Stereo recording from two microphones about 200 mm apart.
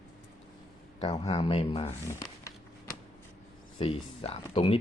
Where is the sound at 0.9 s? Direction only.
30° left (ahead or behind).